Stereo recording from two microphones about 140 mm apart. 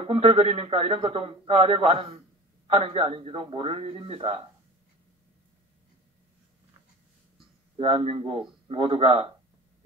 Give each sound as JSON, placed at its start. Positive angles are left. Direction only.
{"t": 0.0, "sound": "a man's voice", "side_deg": -45}
{"t": 7.7, "sound": "a man's voice", "side_deg": -45}